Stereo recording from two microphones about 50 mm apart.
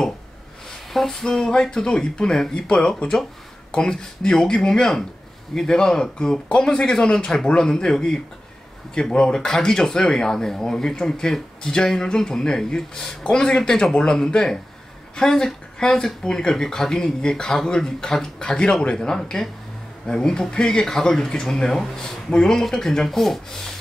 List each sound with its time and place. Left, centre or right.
0.9 s speech: centre